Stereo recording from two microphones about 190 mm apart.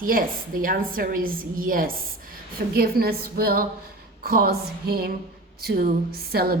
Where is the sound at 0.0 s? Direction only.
45° right (ahead or behind).